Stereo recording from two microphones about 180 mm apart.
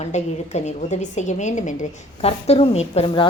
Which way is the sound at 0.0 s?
40° left (ahead or behind).